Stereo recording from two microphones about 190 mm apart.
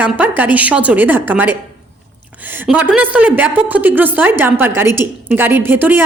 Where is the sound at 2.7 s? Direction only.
10° right (ahead or behind).